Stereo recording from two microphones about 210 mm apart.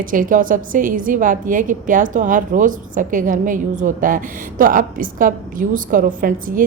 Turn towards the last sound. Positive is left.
turn(degrees=-40)  # may be behind; listen again after turning